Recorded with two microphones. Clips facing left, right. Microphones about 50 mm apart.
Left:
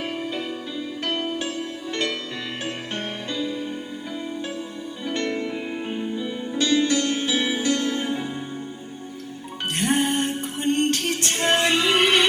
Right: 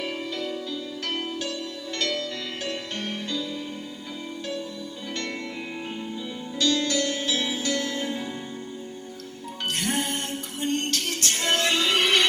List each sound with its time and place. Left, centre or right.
0.1 s music: left
5.0 s music: left
6.5 s music: left
9.7 s music: left